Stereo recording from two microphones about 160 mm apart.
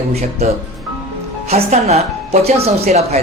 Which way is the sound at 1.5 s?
40° right (ahead or behind).